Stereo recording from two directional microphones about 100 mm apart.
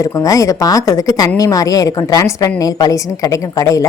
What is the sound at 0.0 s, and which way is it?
A woman's voice, 35° left (ahead or behind).